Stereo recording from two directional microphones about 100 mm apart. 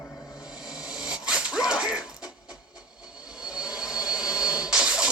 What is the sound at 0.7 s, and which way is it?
Dog, 5° right (ahead or behind).